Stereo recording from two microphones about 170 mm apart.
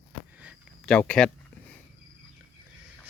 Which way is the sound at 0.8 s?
5° left (ahead or behind).